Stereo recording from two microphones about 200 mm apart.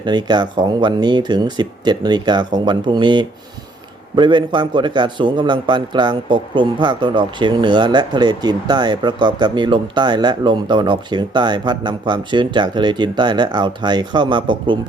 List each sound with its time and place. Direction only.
0.0 s a man's voice: 20° right (ahead or behind)